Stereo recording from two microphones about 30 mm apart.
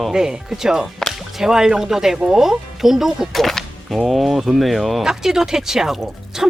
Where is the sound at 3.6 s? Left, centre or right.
Left.